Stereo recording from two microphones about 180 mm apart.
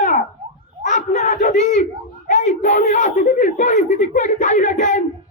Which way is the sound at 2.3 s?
45° left (ahead or behind).